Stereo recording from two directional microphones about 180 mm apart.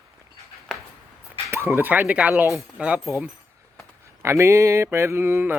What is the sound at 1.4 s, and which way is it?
Speech, 15° right (ahead or behind).